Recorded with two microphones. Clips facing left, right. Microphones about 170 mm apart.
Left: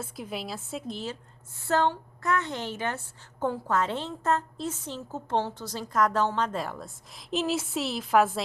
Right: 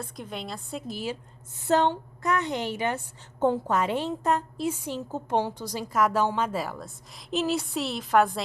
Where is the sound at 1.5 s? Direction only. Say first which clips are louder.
Right 2 dB; 20° right (ahead or behind).